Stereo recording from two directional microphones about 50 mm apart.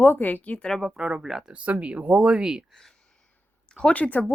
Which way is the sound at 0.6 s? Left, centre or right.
Centre.